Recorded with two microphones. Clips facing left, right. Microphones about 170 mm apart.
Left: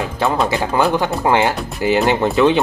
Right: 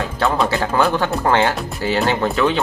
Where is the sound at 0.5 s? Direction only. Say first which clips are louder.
Left 1 dB; 15° left (ahead or behind).